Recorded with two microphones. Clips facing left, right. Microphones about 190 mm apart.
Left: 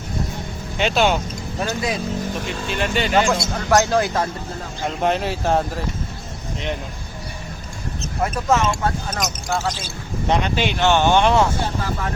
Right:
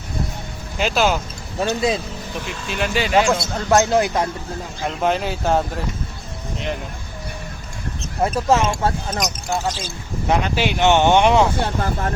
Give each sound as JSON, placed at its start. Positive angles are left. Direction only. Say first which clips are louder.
{"t": 0.8, "sound": "speech", "louder": "left 1 dB", "side_deg": 0}
{"t": 1.6, "sound": "speech", "louder": "right 4 dB", "side_deg": -25}
{"t": 2.5, "sound": "speech", "louder": "right 2 dB", "side_deg": 0}
{"t": 3.7, "sound": "speech", "louder": "right 1 dB", "side_deg": -20}
{"t": 5.0, "sound": "speech", "louder": "even", "side_deg": 0}
{"t": 8.2, "sound": "speech", "louder": "right 2 dB", "side_deg": -25}